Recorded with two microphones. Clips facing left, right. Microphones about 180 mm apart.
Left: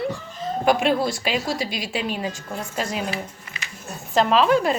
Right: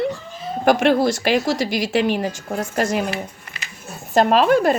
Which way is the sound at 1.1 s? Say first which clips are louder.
Right 6 dB; 80° right.